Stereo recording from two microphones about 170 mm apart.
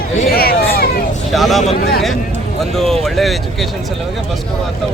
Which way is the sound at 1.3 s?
Centre (ahead or behind).